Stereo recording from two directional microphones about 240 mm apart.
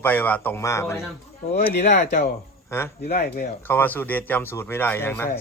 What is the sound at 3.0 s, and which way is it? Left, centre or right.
Speech, left.